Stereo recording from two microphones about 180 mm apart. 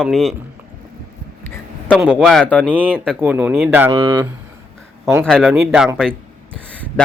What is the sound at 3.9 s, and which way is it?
Speech, 25° right (ahead or behind).